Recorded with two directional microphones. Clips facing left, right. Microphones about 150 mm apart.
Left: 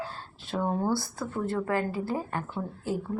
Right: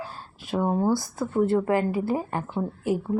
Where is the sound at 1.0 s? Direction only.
25° right (ahead or behind).